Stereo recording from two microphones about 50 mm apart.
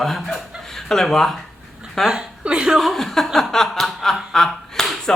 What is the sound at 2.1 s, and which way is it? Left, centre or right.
Speech, centre.